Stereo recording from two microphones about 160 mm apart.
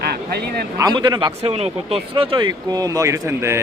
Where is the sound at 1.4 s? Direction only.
40° right (ahead or behind).